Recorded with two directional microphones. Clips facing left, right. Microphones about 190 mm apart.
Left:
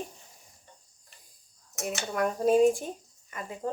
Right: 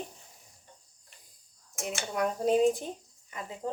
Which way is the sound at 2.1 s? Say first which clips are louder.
Left 3 dB; 20° right (ahead or behind).